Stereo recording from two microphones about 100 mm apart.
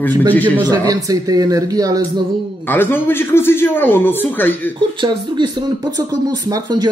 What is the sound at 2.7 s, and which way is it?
A man's voice, 20° left (ahead or behind).